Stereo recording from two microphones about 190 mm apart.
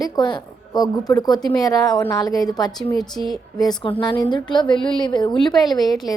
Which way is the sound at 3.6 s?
20° left (ahead or behind).